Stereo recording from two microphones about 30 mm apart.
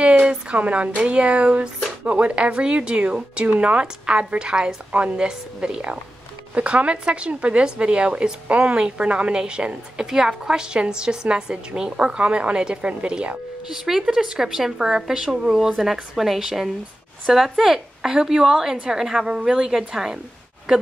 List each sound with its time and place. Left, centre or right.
0.3 s a woman's voice: right
3.8 s a woman's voice: right
6.5 s a woman's voice: right
8.7 s a woman's voice: right
10.0 s a woman's voice: centre
12.2 s a woman's voice: right
13.7 s a woman's voice: centre
15.8 s a woman's voice: centre